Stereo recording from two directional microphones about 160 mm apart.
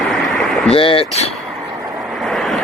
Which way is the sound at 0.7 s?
35° left (ahead or behind).